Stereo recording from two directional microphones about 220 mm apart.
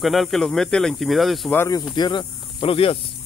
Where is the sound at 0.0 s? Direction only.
Centre (ahead or behind).